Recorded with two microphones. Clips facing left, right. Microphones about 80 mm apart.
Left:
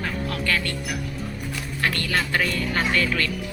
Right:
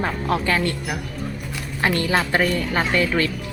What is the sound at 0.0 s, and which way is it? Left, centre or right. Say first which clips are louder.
A woman's voice: right 5 dB; right.